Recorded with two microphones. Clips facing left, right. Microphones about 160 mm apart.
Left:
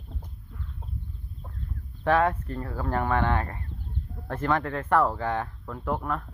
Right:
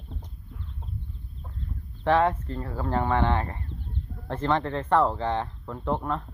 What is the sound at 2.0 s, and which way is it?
Speech, 20° right (ahead or behind).